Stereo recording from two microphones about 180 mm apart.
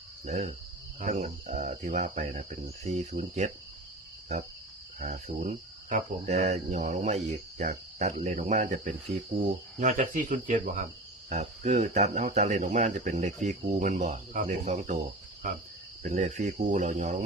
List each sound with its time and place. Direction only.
0.3 s speech: 40° right (ahead or behind)
4.9 s speech: 45° right (ahead or behind)
7.6 s cricket: 40° right (ahead or behind)
11.3 s speech: 40° right (ahead or behind)
16.0 s cricket: 40° right (ahead or behind)